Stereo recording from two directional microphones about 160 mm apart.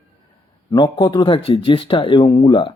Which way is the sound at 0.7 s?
30° left (ahead or behind).